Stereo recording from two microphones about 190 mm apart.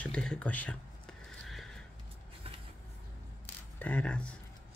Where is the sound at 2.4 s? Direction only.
30° right (ahead or behind).